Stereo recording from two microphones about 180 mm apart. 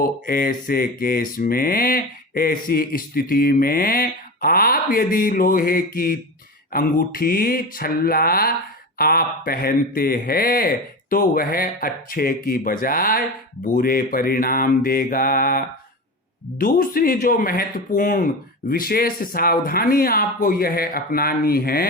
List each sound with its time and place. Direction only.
0.0 s mantra: 55° left (ahead or behind)
6.7 s speech: 55° left (ahead or behind)
12.8 s mantra: 50° left (ahead or behind)
18.7 s speech: 55° left (ahead or behind)